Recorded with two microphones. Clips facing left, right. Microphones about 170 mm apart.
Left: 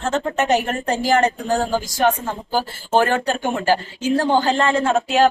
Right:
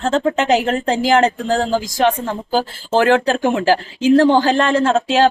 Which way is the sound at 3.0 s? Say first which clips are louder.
Right 6 dB; 90° right.